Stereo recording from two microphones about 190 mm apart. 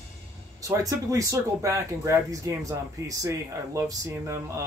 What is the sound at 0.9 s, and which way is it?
Speech, 15° right (ahead or behind).